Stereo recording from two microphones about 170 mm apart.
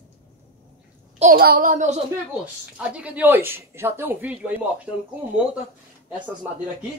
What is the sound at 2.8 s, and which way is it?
Speech, 5° right (ahead or behind).